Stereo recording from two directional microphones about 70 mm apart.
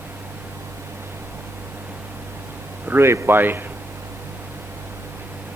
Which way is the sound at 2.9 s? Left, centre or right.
Right.